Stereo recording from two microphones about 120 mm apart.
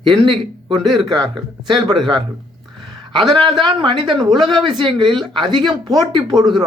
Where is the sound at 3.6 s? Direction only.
40° right (ahead or behind).